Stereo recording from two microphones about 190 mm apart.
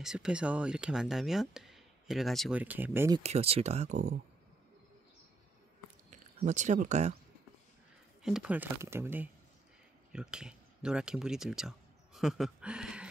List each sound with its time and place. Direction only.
0.0 s speech: 5° right (ahead or behind)
3.2 s speech: 35° right (ahead or behind)
6.0 s speech: 40° right (ahead or behind)
8.2 s speech: 5° right (ahead or behind)